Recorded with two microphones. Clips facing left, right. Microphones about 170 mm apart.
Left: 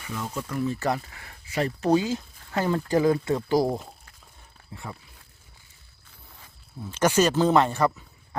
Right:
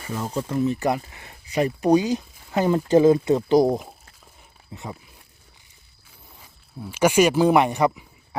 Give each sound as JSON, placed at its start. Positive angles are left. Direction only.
{"t": 0.0, "sound": "speech", "side_deg": -40}
{"t": 6.4, "sound": "speech", "side_deg": -10}